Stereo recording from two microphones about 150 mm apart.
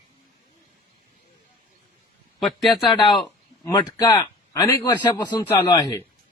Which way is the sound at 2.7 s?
30° left (ahead or behind).